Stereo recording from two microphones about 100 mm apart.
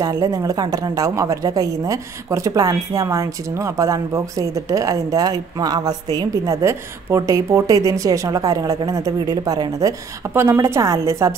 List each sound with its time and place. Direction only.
0.0 s a woman's voice: 35° right (ahead or behind)